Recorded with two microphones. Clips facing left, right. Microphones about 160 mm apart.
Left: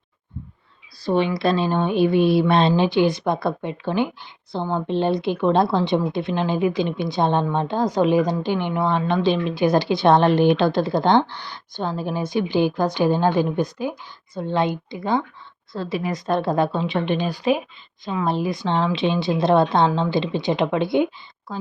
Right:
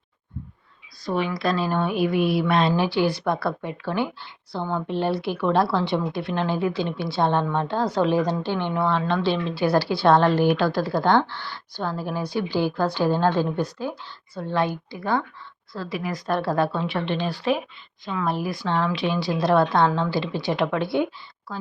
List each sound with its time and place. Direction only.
1.0 s speech: 30° left (ahead or behind)